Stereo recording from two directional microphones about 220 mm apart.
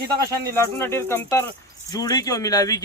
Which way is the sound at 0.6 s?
10° left (ahead or behind).